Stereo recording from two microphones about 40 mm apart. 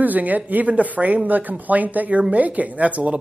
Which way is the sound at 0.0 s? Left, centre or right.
Right.